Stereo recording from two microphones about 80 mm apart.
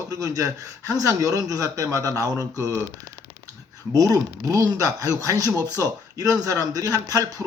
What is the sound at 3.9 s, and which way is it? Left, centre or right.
Speech, right.